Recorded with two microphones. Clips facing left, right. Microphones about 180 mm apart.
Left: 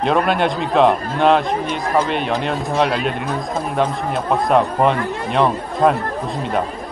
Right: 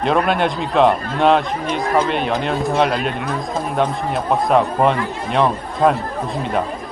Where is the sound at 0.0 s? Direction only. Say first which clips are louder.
Even; centre (ahead or behind).